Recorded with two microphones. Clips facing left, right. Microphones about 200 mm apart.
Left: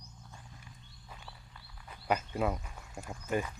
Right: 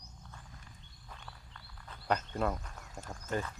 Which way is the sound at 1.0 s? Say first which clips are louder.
Even; 10° left (ahead or behind).